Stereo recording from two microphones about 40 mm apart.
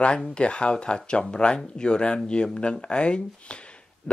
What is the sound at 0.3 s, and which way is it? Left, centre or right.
Speech, left.